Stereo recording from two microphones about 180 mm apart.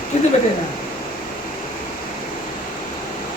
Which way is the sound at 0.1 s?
40° left (ahead or behind).